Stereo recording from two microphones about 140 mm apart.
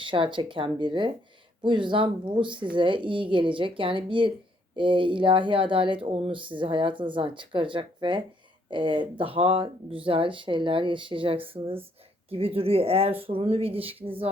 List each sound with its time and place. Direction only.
0.0 s speech: 35° right (ahead or behind)